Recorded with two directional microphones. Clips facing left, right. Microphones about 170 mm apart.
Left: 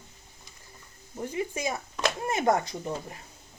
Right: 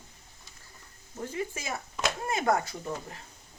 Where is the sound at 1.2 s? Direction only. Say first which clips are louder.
Left 4 dB; 15° left (ahead or behind).